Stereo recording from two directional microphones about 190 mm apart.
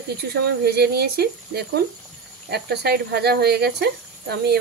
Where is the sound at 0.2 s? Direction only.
55° right (ahead or behind).